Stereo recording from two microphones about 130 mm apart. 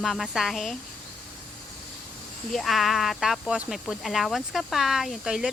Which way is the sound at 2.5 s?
Centre (ahead or behind).